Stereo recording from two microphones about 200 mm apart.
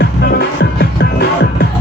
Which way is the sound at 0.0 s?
55° left (ahead or behind).